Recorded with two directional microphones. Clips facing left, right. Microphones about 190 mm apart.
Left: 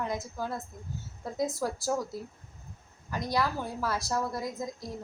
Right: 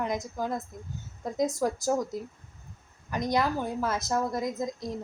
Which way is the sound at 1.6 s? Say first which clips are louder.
Right 4 dB; 20° right (ahead or behind).